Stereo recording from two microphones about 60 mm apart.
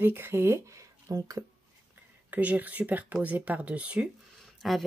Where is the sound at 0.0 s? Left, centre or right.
Right.